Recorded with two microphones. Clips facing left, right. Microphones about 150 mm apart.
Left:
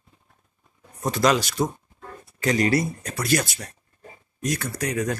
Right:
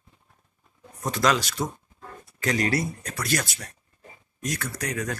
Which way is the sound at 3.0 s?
25° left (ahead or behind).